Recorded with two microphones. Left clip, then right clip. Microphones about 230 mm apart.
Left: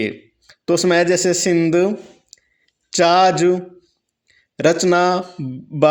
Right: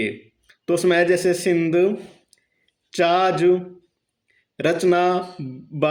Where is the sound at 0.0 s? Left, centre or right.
Left.